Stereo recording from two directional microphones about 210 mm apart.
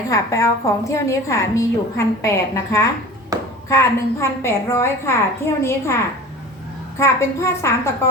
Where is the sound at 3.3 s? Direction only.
15° right (ahead or behind).